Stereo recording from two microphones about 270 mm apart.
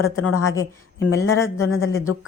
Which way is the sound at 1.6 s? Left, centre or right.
Left.